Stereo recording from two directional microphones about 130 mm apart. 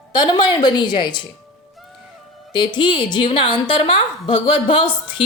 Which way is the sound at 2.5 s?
35° left (ahead or behind).